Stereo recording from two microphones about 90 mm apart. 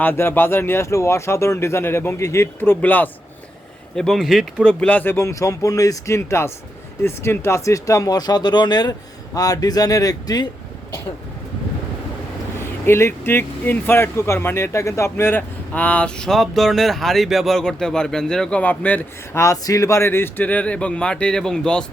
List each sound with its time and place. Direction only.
0.0 s speech: 25° left (ahead or behind)
3.9 s speech: 5° left (ahead or behind)
5.1 s speech: 35° left (ahead or behind)
12.8 s speech: 25° left (ahead or behind)
19.3 s speech: 35° left (ahead or behind); by 21.8 s 10° left (ahead or behind)